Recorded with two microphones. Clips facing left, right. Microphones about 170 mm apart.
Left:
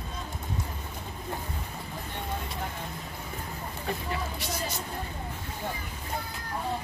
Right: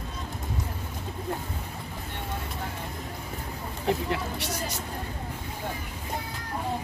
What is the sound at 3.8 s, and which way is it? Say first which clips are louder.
Speech: right 6 dB; 75° right (ahead or behind).